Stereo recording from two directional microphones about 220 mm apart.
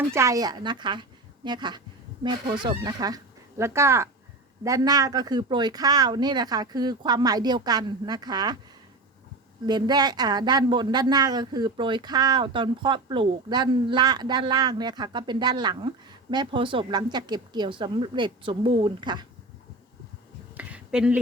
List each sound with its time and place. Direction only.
0.1 s speech: 15° right (ahead or behind)
9.6 s speech: 20° right (ahead or behind)
20.6 s a sound: 5° right (ahead or behind)